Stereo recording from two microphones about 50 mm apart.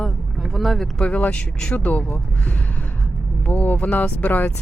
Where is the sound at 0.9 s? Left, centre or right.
Left.